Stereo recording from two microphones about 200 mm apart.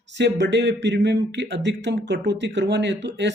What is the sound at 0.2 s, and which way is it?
Speech, 60° right (ahead or behind).